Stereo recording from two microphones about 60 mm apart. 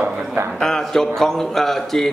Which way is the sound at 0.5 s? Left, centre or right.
Centre.